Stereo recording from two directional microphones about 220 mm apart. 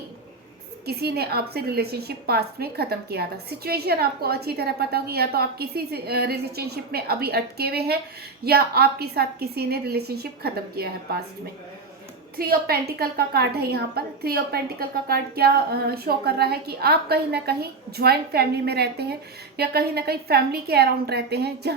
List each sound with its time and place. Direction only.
0.9 s a woman's voice: 45° right (ahead or behind)
12.4 s a woman's voice: 45° right (ahead or behind)